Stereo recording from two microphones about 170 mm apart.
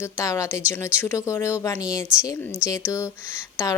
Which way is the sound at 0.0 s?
15° left (ahead or behind).